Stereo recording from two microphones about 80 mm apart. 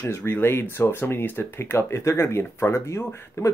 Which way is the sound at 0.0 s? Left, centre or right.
Left.